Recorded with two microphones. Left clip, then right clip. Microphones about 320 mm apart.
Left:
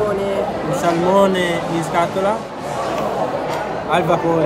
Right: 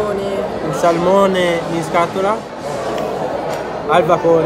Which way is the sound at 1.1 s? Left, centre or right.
Centre.